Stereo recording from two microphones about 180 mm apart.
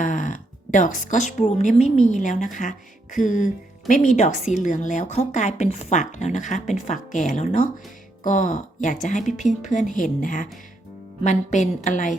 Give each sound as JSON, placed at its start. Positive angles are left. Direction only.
{"t": 0.0, "sound": "speech", "side_deg": 45}